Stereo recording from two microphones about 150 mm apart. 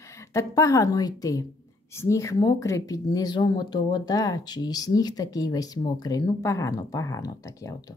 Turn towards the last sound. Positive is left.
turn(degrees=20)  # may be behind; listen again after turning